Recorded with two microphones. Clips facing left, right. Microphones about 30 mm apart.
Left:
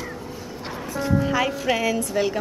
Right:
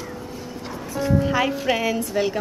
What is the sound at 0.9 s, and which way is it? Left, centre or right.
Music, centre.